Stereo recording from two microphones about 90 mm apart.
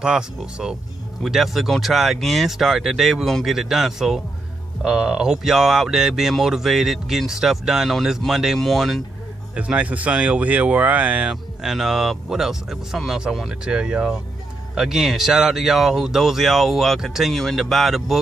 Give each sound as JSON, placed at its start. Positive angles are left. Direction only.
{"t": 0.0, "sound": "speech", "side_deg": -10}
{"t": 9.6, "sound": "speech", "side_deg": -15}
{"t": 11.6, "sound": "speech", "side_deg": -5}